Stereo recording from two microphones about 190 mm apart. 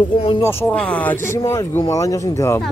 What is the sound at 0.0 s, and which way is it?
Speech, 25° left (ahead or behind).